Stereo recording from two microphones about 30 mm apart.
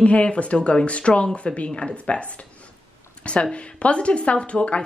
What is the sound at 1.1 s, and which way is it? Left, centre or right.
Speech, left.